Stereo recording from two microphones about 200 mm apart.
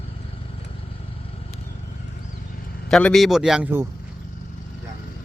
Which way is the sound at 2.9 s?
5° left (ahead or behind).